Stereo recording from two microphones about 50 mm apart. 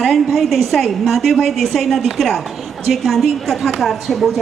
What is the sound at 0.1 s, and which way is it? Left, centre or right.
A woman's voice, centre.